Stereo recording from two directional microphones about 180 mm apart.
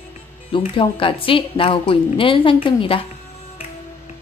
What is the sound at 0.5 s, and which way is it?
A woman's voice, 30° left (ahead or behind).